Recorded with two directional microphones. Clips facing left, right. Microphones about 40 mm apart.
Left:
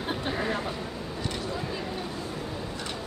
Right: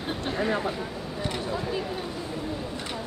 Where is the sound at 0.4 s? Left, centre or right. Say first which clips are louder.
Right 3 dB; centre.